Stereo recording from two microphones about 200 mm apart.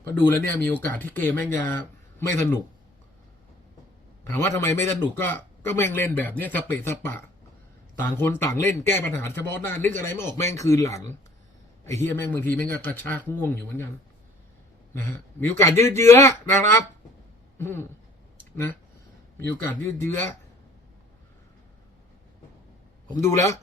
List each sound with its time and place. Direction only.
0.1 s a man's voice: 10° left (ahead or behind)
4.2 s a man's voice: 10° left (ahead or behind)
14.9 s a man's voice: 10° left (ahead or behind)
23.1 s a man's voice: 15° left (ahead or behind)